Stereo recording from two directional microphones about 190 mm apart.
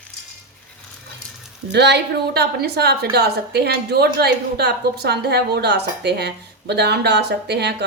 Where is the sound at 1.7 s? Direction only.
60° right (ahead or behind).